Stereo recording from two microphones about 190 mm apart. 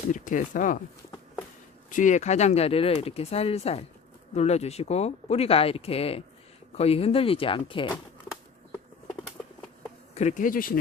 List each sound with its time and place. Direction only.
0.1 s speech: 45° left (ahead or behind)
1.9 s speech: 40° left (ahead or behind)
10.2 s speech: 40° left (ahead or behind)